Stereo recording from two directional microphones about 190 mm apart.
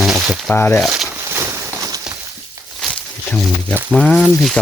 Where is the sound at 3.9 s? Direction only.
5° left (ahead or behind).